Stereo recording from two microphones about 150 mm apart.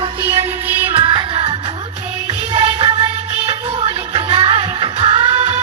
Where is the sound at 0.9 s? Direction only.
35° right (ahead or behind).